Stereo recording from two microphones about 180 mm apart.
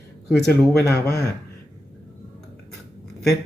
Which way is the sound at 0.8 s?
60° left (ahead or behind).